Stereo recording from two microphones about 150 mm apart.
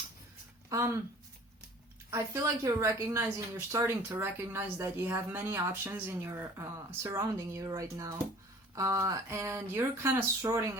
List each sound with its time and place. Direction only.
0.7 s speech: 20° right (ahead or behind)
2.0 s speech: 20° right (ahead or behind)